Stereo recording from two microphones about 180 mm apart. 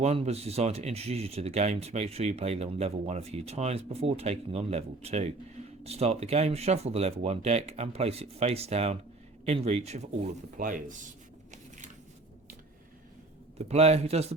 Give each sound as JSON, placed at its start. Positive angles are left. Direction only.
{"t": 0.0, "sound": "speech", "side_deg": -35}
{"t": 13.6, "sound": "speech", "side_deg": -35}